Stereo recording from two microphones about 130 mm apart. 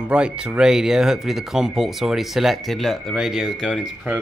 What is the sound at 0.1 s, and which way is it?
Speech, 5° right (ahead or behind).